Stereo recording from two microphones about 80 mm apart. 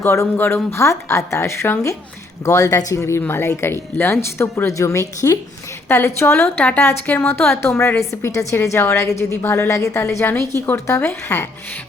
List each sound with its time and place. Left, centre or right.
0.0 s a woman's voice: left
2.4 s a woman's voice: left
11.3 s speech: left